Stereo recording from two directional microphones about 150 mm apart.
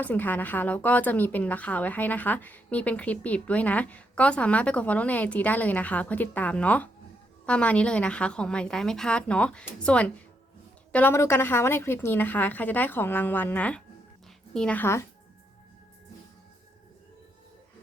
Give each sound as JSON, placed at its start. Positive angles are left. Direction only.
{"t": 0.0, "sound": "a woman's voice", "side_deg": 10}